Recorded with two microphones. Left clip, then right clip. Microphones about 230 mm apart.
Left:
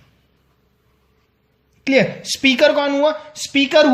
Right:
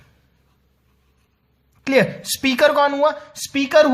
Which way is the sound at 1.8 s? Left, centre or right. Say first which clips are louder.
Left 1 dB; right.